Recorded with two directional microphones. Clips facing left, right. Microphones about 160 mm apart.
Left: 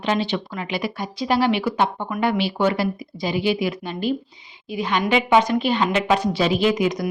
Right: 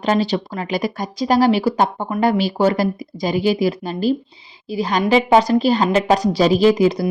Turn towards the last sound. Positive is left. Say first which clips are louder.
# right 6 dB
turn(degrees=-30)  # may be behind; listen again after turning